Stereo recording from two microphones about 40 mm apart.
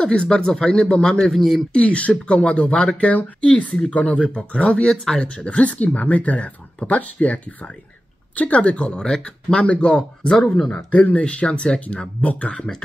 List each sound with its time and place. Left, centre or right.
0.0 s speech: left
1.2 s speech: centre
1.7 s speech: left
3.1 s speech: left
10.2 s speech: centre
10.7 s speech: left